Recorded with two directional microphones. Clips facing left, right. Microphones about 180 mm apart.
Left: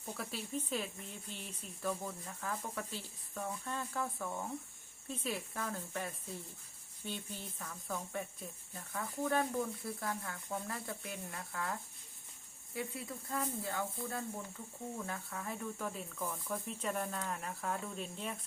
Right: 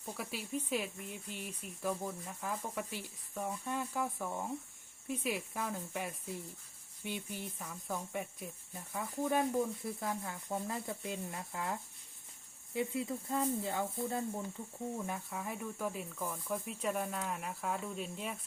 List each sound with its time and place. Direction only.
0.0 s speech: 10° right (ahead or behind)